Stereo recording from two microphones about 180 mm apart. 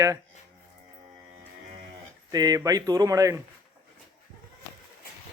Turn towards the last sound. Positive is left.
turn(degrees=-20)  # may be behind; listen again after turning